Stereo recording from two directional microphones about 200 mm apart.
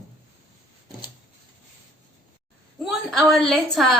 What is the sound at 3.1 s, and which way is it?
Speech, centre (ahead or behind).